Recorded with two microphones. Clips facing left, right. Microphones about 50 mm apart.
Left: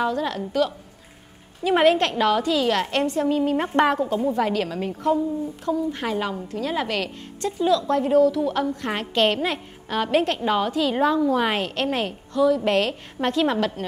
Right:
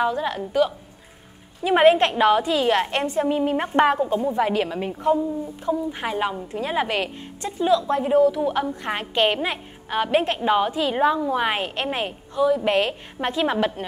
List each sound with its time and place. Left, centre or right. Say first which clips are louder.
0.0 s a woman's voice: right 1 dB; centre